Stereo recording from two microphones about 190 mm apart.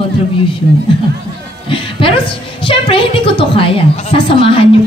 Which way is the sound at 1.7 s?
30° left (ahead or behind).